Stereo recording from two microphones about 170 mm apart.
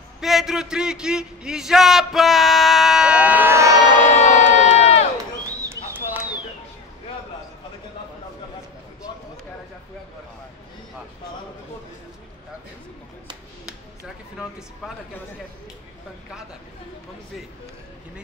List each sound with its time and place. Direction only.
0.2 s a man's voice: centre (ahead or behind); by 3.9 s 20° right (ahead or behind)
4.1 s crowd: 45° left (ahead or behind)
5.1 s a sound: 20° right (ahead or behind)